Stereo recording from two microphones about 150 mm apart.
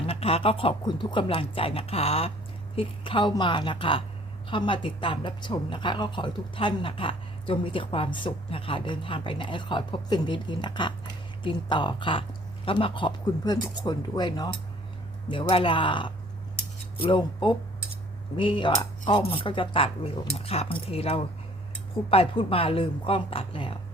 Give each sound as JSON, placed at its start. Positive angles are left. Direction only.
{"t": 0.0, "sound": "speech", "side_deg": 40}